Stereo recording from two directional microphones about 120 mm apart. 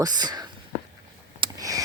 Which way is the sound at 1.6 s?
30° right (ahead or behind).